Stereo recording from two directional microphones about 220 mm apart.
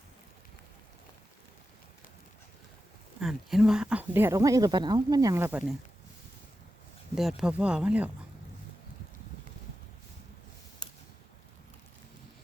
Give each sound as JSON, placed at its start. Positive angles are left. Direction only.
{"t": 3.2, "sound": "speech", "side_deg": 0}
{"t": 7.2, "sound": "speech", "side_deg": 0}
{"t": 10.8, "sound": "mechanisms", "side_deg": 20}